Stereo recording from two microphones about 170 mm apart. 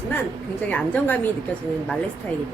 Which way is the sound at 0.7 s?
10° left (ahead or behind).